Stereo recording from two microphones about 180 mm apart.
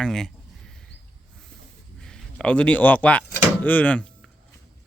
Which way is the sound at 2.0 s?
5° left (ahead or behind).